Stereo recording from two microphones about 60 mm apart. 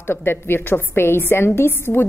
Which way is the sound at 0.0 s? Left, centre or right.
Left.